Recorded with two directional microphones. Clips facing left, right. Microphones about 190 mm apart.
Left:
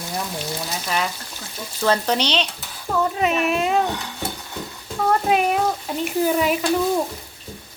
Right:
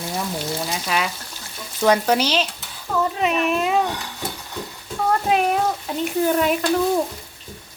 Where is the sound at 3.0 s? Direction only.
Centre (ahead or behind).